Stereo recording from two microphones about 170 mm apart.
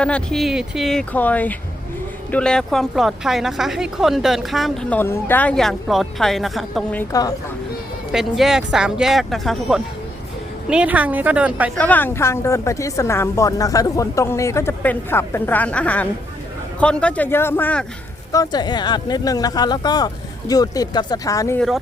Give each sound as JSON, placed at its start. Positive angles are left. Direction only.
{"t": 0.0, "sound": "a woman's voice", "side_deg": 5}
{"t": 7.1, "sound": "speech", "side_deg": 20}
{"t": 8.1, "sound": "a woman's voice", "side_deg": 0}
{"t": 11.8, "sound": "a woman's voice", "side_deg": 10}
{"t": 18.3, "sound": "speech", "side_deg": 20}